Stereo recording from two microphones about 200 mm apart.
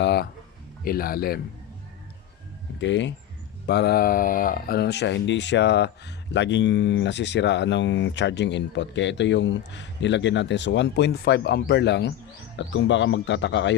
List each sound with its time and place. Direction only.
0.0 s a man's voice: 55° left (ahead or behind)
2.8 s speech: 65° left (ahead or behind)